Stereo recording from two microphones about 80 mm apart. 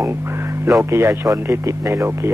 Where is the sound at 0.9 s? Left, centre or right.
Right.